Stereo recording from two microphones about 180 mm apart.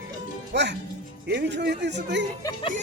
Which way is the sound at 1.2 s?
70° right (ahead or behind).